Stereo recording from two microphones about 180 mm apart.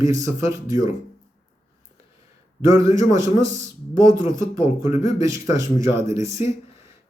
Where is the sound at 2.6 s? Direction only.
20° right (ahead or behind).